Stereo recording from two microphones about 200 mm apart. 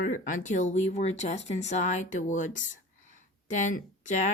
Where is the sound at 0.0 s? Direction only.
40° left (ahead or behind).